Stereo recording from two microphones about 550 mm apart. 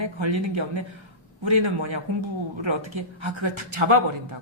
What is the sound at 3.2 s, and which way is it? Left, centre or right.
Speech, right.